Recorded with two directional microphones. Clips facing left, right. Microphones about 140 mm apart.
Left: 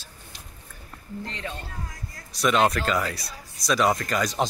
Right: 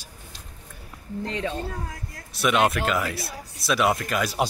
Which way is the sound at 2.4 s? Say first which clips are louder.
Even; 5° right (ahead or behind).